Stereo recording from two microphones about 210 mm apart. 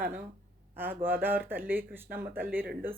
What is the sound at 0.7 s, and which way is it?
Speech, 10° right (ahead or behind).